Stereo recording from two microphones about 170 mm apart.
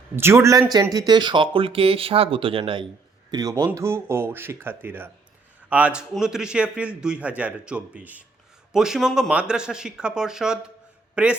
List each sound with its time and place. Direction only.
0.2 s a man's voice: 15° right (ahead or behind)